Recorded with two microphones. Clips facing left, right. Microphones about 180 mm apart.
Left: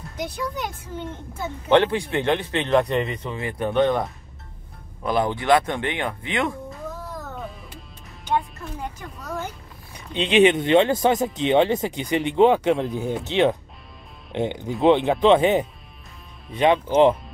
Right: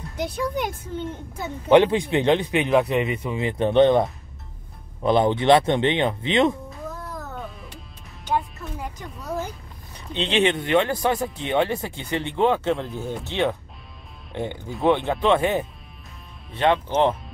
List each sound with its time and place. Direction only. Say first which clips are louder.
1.4 s speech: right 2 dB; 15° right (ahead or behind)
3.3 s speech: right 4 dB; 20° right (ahead or behind)
9.9 s speech: left 5 dB; 15° left (ahead or behind)